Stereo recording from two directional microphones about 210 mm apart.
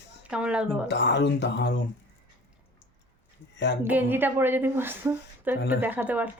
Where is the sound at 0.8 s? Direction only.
55° left (ahead or behind).